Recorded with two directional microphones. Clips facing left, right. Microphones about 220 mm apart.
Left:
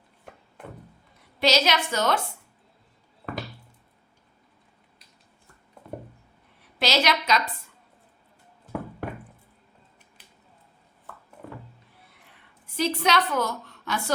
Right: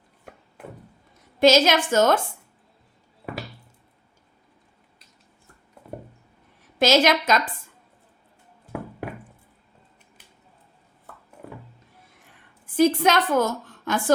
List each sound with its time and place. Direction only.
1.4 s a woman's voice: 50° right (ahead or behind)
6.7 s a woman's voice: 50° right (ahead or behind)
12.7 s a woman's voice: 50° right (ahead or behind)